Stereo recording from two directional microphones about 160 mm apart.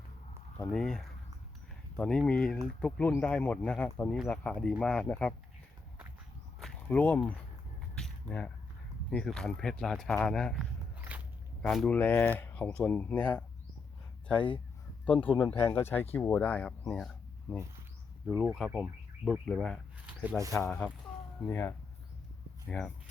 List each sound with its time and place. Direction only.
0.7 s speech: 5° left (ahead or behind)
6.6 s a sound: 5° left (ahead or behind)
9.0 s speech: 5° left (ahead or behind)
14.3 s speech: 30° left (ahead or behind)
15.0 s speech: 10° left (ahead or behind)
18.3 s speech: 5° right (ahead or behind)